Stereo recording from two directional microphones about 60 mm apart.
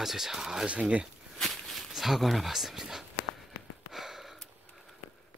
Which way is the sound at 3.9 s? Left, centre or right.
Centre.